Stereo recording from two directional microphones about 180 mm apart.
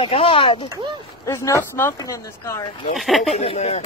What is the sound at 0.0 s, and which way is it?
Speech, 35° left (ahead or behind).